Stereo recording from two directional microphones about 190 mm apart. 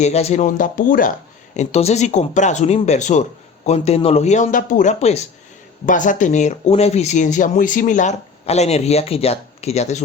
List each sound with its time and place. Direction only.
0.0 s speech: 35° left (ahead or behind)
1.5 s speech: 35° left (ahead or behind)